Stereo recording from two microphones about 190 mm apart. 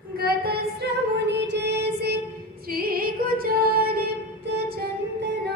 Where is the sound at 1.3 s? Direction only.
65° right (ahead or behind).